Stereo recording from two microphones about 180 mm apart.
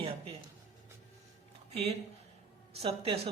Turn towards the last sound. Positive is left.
turn(degrees=-35)  # may be behind; listen again after turning